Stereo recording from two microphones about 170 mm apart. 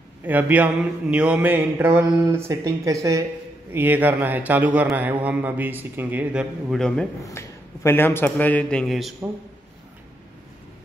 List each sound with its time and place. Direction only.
0.2 s a man's voice: 10° right (ahead or behind)
7.2 s a man's voice: 15° left (ahead or behind); by 9.1 s centre (ahead or behind)